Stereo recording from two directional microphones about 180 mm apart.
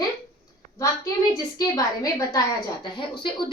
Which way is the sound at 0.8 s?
20° left (ahead or behind).